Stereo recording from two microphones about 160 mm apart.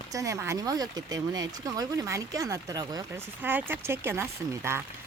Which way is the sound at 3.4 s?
10° right (ahead or behind).